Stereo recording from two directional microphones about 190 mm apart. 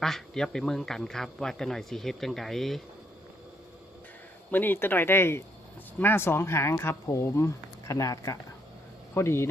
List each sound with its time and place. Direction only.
0.0 s speech: centre (ahead or behind)
4.5 s speech: 10° left (ahead or behind)